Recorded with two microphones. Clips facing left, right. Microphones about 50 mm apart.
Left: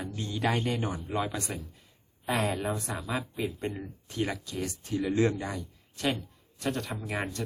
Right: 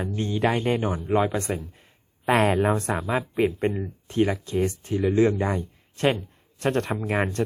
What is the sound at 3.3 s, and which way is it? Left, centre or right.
Speech, right.